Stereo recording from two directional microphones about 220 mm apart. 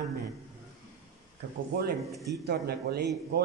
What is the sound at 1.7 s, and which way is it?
A man's voice, 45° right (ahead or behind).